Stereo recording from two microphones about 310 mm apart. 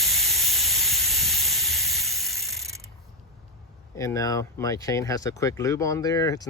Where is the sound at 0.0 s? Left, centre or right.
Centre.